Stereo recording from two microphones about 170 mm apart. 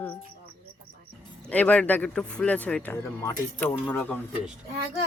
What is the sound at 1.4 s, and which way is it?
Speech, 10° left (ahead or behind).